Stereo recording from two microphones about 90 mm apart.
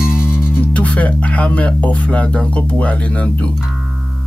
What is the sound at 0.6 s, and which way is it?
Speech, 15° left (ahead or behind).